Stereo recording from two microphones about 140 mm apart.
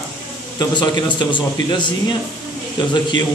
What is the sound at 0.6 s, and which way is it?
A man's voice, 30° left (ahead or behind).